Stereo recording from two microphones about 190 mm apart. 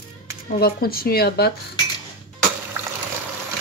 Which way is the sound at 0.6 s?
50° left (ahead or behind).